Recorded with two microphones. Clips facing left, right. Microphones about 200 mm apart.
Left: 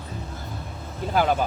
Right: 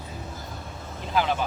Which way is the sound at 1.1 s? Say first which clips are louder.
Left 3 dB; 45° left (ahead or behind).